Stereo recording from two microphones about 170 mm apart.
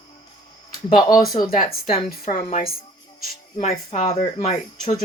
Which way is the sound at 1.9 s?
35° left (ahead or behind).